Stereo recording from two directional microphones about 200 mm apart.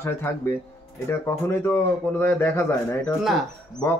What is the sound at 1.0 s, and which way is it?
A man's voice, 10° left (ahead or behind).